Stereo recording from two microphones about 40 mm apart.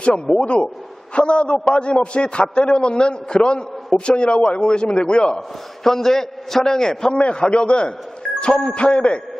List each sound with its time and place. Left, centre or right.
0.3 s a man's voice: left
5.8 s a man's voice: centre
7.1 s a man's voice: left